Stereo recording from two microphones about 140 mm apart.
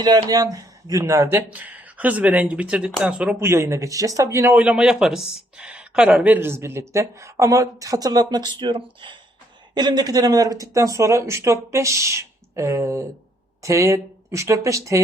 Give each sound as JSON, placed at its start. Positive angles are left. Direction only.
{"t": 0.0, "sound": "speech", "side_deg": -30}